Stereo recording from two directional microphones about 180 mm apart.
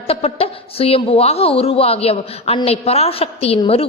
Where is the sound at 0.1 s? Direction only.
35° left (ahead or behind).